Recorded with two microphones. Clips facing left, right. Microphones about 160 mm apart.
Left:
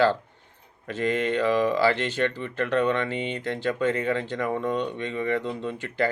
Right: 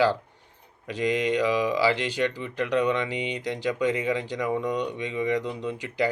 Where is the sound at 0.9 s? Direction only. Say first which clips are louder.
Even; 15° right (ahead or behind).